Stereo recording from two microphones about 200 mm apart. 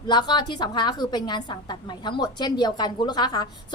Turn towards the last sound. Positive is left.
turn(degrees=20)  # may be behind; listen again after turning